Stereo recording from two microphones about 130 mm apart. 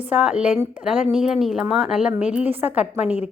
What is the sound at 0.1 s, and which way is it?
A woman's voice, 10° right (ahead or behind).